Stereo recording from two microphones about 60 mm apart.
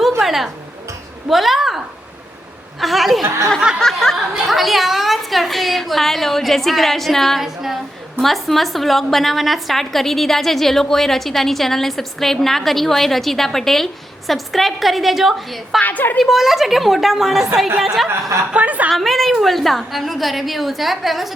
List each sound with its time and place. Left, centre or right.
0.2 s music: centre
1.3 s a woman's voice: centre
2.8 s a woman's voice: centre
7.4 s female singing: centre
8.2 s a woman's voice: centre
15.8 s a woman's voice: left
16.2 s a woman's voice: centre
18.5 s a woman's voice: right
18.9 s a woman's voice: centre